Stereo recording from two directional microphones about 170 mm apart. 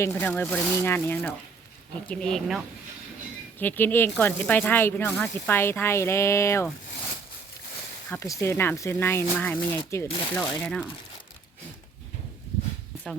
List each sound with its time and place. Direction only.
0.0 s speech: 10° left (ahead or behind)
8.1 s speech: 20° left (ahead or behind)